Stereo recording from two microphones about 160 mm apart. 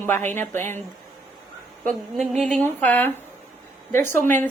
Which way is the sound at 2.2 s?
45° right (ahead or behind).